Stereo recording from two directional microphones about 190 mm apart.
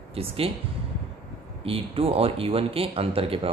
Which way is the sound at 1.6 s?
30° right (ahead or behind).